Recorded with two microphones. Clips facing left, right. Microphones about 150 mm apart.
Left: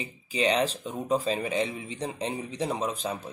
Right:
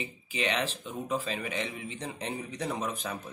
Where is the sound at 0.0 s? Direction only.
35° left (ahead or behind).